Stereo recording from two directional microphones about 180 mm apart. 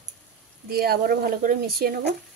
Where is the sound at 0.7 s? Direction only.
60° right (ahead or behind).